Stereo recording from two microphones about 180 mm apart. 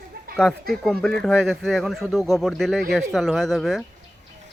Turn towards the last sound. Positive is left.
turn(degrees=0)  # may be behind; listen again after turning